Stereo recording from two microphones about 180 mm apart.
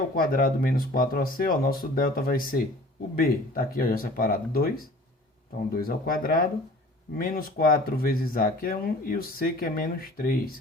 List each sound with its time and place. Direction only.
0.2 s speech: 55° left (ahead or behind)
5.7 s speech: 55° left (ahead or behind)